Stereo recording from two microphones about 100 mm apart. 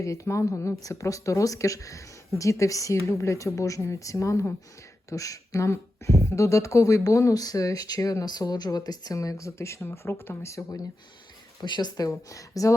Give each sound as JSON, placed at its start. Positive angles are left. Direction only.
{"t": 0.0, "sound": "speech", "side_deg": 30}
{"t": 11.6, "sound": "speech", "side_deg": 45}